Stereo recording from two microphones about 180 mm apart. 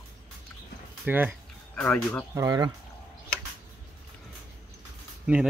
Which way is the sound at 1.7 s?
10° left (ahead or behind).